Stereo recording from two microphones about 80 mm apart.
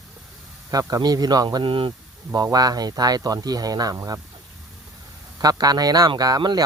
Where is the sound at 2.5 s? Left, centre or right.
Right.